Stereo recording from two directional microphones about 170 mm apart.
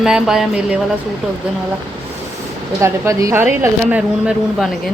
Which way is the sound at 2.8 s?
15° right (ahead or behind).